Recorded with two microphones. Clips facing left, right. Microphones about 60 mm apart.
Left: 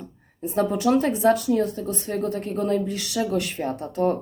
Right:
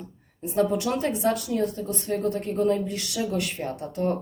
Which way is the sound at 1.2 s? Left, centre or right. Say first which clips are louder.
Left 5 dB; left.